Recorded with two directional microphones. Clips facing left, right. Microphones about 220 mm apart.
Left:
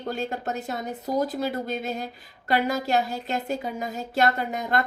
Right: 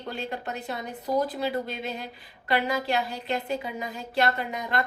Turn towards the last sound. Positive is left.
turn(degrees=45)  # may be behind; listen again after turning